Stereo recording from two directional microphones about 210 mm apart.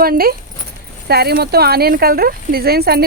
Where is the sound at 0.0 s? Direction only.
45° right (ahead or behind).